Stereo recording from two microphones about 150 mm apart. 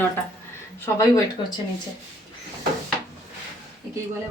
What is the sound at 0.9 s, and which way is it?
Speech, 20° left (ahead or behind).